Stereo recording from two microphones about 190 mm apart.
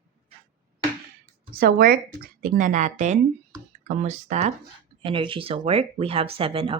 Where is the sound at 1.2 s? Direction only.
50° right (ahead or behind); by 6.8 s 30° right (ahead or behind).